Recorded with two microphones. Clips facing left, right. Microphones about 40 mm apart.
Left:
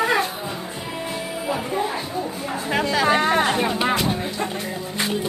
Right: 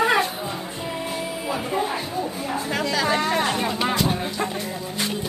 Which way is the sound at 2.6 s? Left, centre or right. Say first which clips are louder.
Left 4 dB; left.